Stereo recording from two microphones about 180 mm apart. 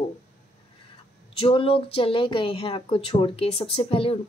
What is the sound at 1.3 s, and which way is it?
Speech, 30° left (ahead or behind).